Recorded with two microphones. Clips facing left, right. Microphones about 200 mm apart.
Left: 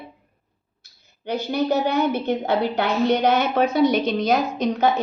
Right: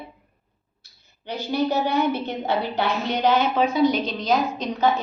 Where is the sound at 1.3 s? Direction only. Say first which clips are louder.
Left 2 dB; 45° left (ahead or behind).